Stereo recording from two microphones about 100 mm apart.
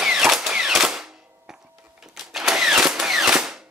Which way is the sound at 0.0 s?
5° right (ahead or behind).